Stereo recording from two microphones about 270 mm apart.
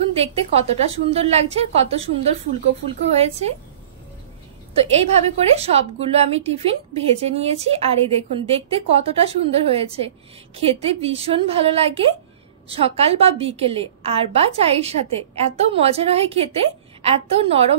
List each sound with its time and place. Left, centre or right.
0.1 s a woman's voice: right
4.7 s a woman's voice: right